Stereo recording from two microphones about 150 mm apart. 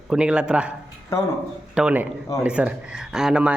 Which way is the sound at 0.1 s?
5° right (ahead or behind).